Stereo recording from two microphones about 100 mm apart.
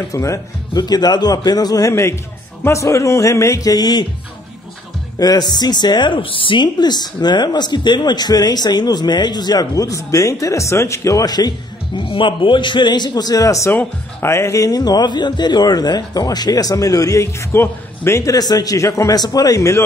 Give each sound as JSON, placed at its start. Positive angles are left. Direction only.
{"t": 0.1, "sound": "speech", "side_deg": 30}
{"t": 0.7, "sound": "speech", "side_deg": 45}
{"t": 5.2, "sound": "speech", "side_deg": 45}
{"t": 13.7, "sound": "speech", "side_deg": 25}